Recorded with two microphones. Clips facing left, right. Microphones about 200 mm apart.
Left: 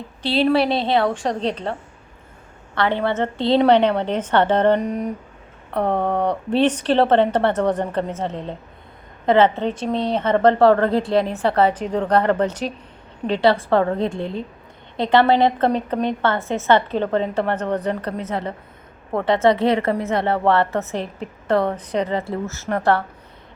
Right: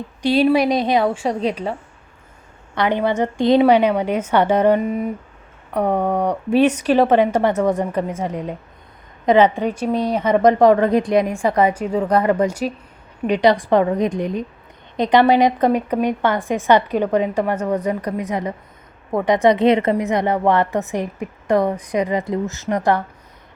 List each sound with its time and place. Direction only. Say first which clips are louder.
0.2 s a woman's voice: right 3 dB; 15° right (ahead or behind)
2.7 s a woman's voice: right 2 dB; 15° right (ahead or behind)